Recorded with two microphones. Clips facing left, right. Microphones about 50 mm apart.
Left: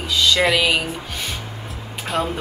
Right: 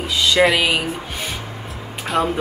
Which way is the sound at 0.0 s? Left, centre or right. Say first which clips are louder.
Right 2 dB; centre.